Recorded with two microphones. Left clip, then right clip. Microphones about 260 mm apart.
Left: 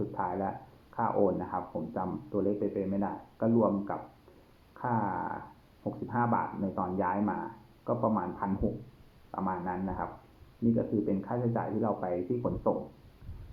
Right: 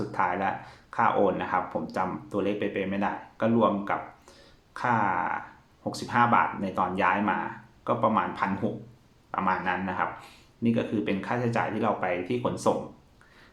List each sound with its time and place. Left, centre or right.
0.1 s speech: right